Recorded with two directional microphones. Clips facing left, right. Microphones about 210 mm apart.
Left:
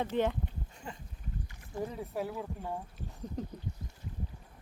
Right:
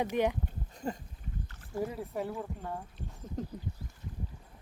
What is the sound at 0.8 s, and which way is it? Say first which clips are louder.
Speech: right 10 dB; 40° right (ahead or behind).